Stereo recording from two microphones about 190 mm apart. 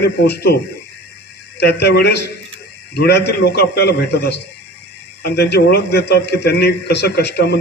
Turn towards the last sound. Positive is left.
turn(degrees=55)  # may be behind; listen again after turning